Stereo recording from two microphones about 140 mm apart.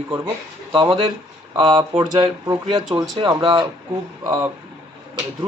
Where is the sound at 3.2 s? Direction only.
40° right (ahead or behind).